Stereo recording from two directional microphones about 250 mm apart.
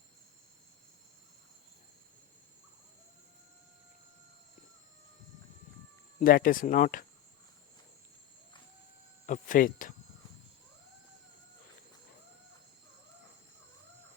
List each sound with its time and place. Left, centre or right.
6.1 s speech: left
9.2 s speech: left